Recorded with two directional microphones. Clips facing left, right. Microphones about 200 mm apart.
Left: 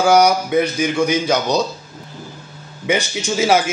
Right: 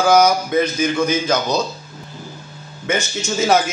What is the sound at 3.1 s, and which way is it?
Speech, 15° left (ahead or behind).